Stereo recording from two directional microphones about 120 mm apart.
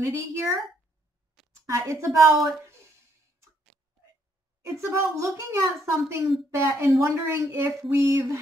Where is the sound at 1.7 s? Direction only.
25° right (ahead or behind).